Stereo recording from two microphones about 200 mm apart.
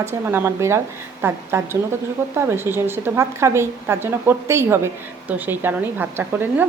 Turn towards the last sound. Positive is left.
turn(degrees=-10)  # may be behind; listen again after turning